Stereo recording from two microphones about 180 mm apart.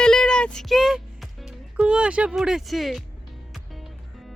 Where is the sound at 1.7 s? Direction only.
5° right (ahead or behind).